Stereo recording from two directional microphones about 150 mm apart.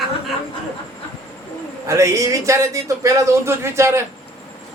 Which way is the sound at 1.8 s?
20° right (ahead or behind).